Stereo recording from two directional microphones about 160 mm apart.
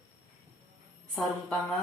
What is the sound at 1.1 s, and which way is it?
Speech, centre (ahead or behind).